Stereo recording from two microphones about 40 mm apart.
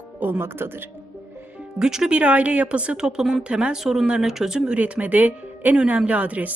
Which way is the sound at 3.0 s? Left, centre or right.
Centre.